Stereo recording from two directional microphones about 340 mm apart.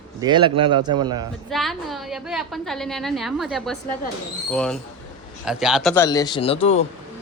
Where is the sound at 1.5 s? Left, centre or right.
Centre.